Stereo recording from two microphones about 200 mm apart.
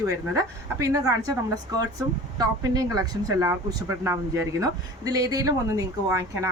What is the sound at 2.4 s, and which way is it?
Speech, 20° right (ahead or behind).